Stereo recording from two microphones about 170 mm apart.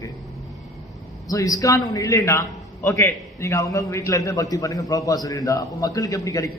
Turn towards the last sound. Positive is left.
turn(degrees=20)  # may be behind; listen again after turning